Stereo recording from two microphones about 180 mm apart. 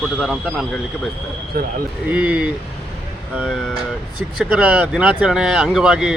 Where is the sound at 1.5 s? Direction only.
55° right (ahead or behind).